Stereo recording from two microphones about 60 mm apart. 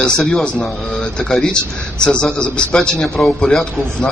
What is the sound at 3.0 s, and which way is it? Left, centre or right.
Speech, centre.